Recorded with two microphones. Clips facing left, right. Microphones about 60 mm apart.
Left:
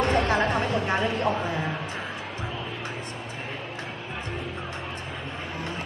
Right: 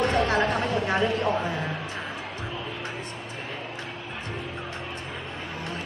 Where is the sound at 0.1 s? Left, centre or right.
Left.